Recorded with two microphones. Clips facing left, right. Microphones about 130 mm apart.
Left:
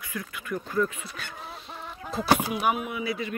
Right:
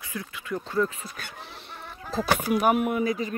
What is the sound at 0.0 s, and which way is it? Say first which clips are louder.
Speech: even; 25° right (ahead or behind).